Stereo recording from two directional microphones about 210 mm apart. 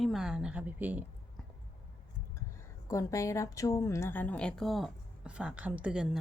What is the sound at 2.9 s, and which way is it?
Speech, 15° left (ahead or behind).